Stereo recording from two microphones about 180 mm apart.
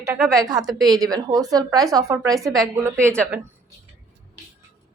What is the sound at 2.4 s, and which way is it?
Speech, centre (ahead or behind).